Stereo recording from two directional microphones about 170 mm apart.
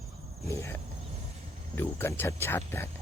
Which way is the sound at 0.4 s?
15° left (ahead or behind).